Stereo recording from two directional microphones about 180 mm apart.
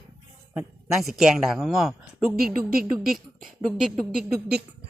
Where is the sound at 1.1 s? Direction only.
5° right (ahead or behind).